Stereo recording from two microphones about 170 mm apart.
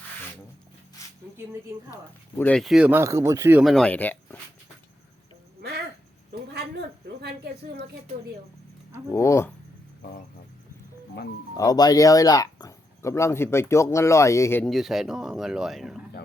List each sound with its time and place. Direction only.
1.9 s speech: 15° left (ahead or behind); by 3.6 s 15° right (ahead or behind)
3.6 s speech: centre (ahead or behind)
7.2 s a woman's voice: 75° right (ahead or behind)
9.1 s speech: 15° left (ahead or behind)
11.5 s speech: 20° left (ahead or behind)
14.6 s speech: centre (ahead or behind)